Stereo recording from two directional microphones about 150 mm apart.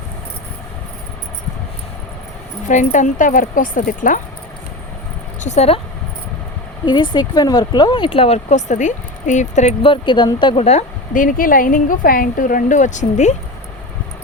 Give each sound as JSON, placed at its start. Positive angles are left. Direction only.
{"t": 2.6, "sound": "a woman's voice", "side_deg": 55}
{"t": 5.4, "sound": "speech", "side_deg": 45}
{"t": 6.8, "sound": "speech", "side_deg": 30}
{"t": 9.8, "sound": "speech", "side_deg": 35}
{"t": 11.1, "sound": "a woman's voice", "side_deg": 65}